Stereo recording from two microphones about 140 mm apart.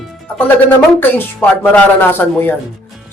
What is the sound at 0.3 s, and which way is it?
Speech, 15° left (ahead or behind).